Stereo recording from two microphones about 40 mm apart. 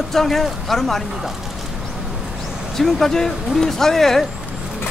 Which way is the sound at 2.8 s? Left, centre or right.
Centre.